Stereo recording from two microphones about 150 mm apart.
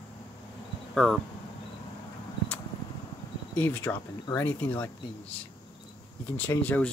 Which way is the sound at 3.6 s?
15° left (ahead or behind).